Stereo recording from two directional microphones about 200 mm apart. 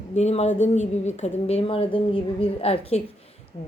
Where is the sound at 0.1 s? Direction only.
35° left (ahead or behind).